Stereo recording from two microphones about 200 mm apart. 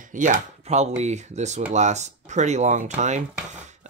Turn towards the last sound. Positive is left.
turn(degrees=-35)  # may be behind; listen again after turning